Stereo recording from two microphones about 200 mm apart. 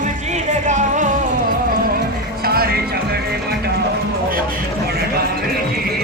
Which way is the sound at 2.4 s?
50° right (ahead or behind).